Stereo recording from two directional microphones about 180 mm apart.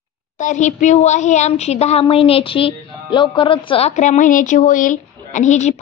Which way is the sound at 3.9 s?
45° left (ahead or behind).